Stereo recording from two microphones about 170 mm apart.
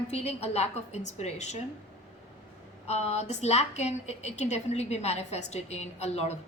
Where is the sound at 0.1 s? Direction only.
40° left (ahead or behind).